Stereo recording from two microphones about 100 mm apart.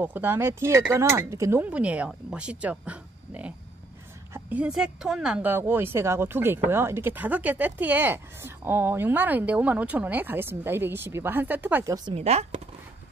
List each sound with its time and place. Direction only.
0.0 s speech: 20° right (ahead or behind)
1.7 s speech: 10° right (ahead or behind)
5.4 s speech: 20° right (ahead or behind)
11.8 s a woman's voice: 40° right (ahead or behind)
12.1 s speech: 90° right